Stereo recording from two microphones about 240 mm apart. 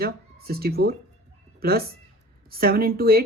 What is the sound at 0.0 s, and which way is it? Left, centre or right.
Speech, right.